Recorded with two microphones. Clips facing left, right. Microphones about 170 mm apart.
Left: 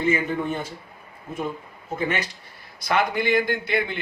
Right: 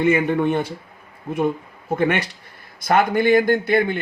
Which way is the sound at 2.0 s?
60° right (ahead or behind).